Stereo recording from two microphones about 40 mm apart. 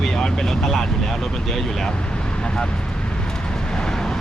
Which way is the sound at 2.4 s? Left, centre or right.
Left.